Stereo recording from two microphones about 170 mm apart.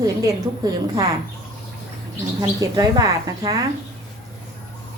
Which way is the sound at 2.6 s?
20° right (ahead or behind).